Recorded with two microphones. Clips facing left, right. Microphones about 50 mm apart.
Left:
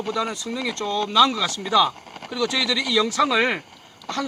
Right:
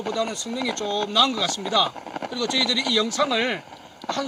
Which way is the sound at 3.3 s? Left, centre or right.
Centre.